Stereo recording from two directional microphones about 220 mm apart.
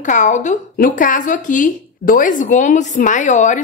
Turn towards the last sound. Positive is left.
turn(degrees=35)  # may be behind; listen again after turning